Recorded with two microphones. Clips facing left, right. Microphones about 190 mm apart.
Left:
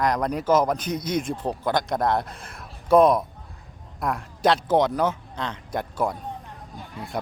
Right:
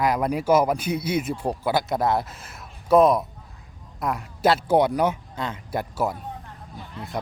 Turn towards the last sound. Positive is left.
turn(degrees=-5)  # may be behind; listen again after turning